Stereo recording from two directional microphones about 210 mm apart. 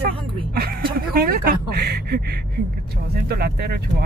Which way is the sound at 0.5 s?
45° right (ahead or behind).